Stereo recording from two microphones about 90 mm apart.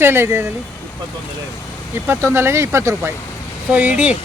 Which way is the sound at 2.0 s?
30° right (ahead or behind).